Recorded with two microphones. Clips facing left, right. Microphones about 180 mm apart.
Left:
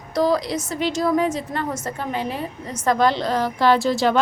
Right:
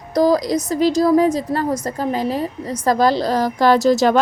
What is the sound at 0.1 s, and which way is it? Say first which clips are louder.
A woman's voice: right 5 dB; 40° right (ahead or behind).